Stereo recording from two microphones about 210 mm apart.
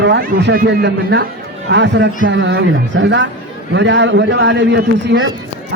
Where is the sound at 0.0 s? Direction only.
50° right (ahead or behind).